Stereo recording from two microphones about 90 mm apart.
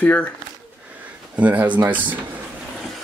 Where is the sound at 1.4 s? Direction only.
15° right (ahead or behind).